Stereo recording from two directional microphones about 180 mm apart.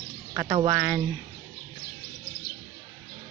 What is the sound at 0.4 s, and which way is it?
Speech, 30° right (ahead or behind).